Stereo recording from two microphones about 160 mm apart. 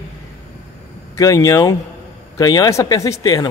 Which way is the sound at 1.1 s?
20° left (ahead or behind).